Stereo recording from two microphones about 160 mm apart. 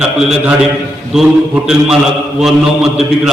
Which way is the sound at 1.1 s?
5° right (ahead or behind).